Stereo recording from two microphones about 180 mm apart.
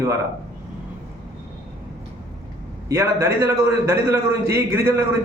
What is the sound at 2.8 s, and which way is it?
A man's voice, 20° right (ahead or behind).